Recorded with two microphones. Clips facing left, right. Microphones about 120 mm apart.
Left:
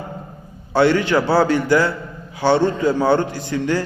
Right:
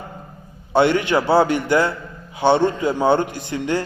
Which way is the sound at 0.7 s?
20° right (ahead or behind).